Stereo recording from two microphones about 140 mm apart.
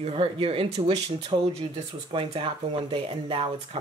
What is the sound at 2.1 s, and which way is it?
Speech, 40° right (ahead or behind).